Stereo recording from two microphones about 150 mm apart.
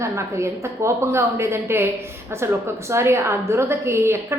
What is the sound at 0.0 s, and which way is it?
A woman's voice, 20° right (ahead or behind).